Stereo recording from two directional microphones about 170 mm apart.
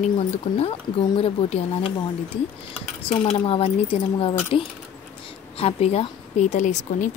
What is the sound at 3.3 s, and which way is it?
Speech, 35° left (ahead or behind).